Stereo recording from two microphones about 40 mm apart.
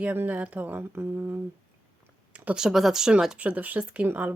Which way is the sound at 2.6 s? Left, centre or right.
Centre.